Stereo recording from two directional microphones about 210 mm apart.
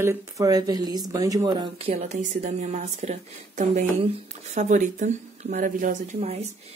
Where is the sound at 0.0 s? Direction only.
15° right (ahead or behind).